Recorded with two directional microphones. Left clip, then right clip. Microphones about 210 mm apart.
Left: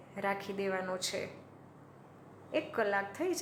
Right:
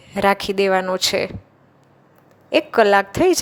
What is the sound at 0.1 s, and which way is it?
A woman's voice, 45° right (ahead or behind).